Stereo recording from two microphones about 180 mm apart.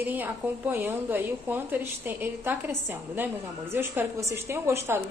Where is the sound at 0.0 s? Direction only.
10° right (ahead or behind).